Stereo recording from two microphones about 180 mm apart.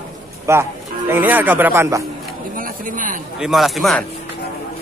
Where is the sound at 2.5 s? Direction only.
50° right (ahead or behind).